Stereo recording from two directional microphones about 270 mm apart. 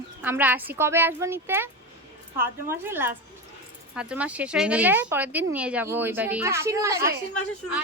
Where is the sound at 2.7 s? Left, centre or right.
Centre.